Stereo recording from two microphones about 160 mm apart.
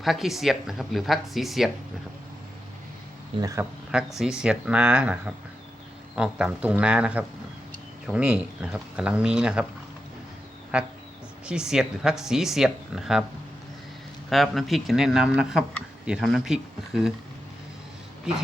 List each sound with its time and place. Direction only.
0.0 s speech: centre (ahead or behind)
3.4 s speech: 20° right (ahead or behind)
4.2 s speech: 5° right (ahead or behind)
10.7 s speech: 5° right (ahead or behind)
14.3 s speech: centre (ahead or behind)
18.3 s speech: 5° right (ahead or behind)